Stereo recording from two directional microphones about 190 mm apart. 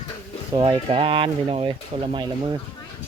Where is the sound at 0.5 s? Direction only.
25° right (ahead or behind).